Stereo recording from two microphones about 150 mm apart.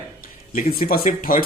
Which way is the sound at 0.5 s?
75° left (ahead or behind).